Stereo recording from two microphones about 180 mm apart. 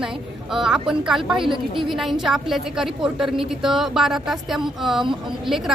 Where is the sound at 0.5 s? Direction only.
Centre (ahead or behind).